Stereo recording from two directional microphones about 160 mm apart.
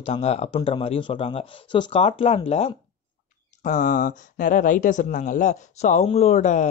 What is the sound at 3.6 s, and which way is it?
Speech, 50° left (ahead or behind).